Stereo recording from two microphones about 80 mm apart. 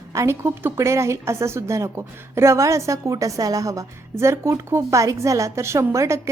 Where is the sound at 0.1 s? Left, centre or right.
Right.